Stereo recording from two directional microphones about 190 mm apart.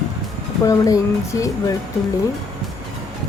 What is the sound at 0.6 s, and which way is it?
Speech, 15° left (ahead or behind).